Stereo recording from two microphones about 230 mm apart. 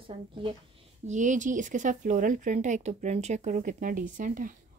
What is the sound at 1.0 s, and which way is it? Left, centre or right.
Speech, right.